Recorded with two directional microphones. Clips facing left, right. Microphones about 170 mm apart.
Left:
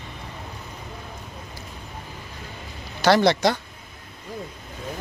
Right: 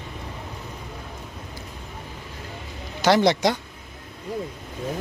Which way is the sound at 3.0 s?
20° right (ahead or behind).